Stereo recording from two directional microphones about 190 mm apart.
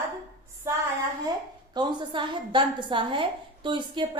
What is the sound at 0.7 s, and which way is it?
A woman's voice, 15° right (ahead or behind).